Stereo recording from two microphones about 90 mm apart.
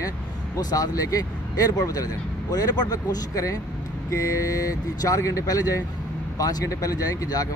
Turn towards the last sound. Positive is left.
turn(degrees=40)  # may be behind; listen again after turning